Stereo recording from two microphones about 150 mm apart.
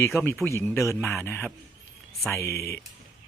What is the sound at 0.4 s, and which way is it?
A man's voice, 20° left (ahead or behind).